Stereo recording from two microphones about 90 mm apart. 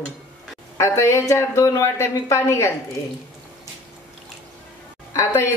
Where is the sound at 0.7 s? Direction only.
35° left (ahead or behind).